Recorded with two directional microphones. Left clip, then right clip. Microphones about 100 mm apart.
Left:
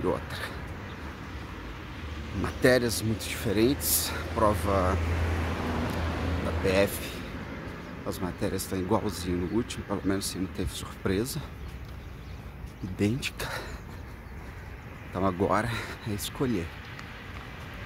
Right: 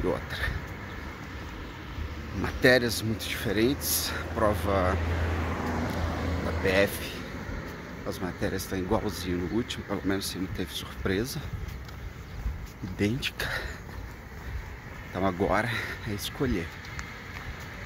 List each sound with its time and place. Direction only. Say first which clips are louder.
0.0 s speech: right 1 dB; 25° left (ahead or behind)
2.3 s speech: right 1 dB; 20° left (ahead or behind)
4.3 s speech: left 1 dB; 10° left (ahead or behind)
5.5 s vehicle: even; 20° right (ahead or behind); by 6.6 s 35° right (ahead or behind)
6.6 s speech: right 1 dB; 25° left (ahead or behind)
13.0 s speech: right 1 dB; 25° left (ahead or behind)
15.1 s speech: even; 25° left (ahead or behind)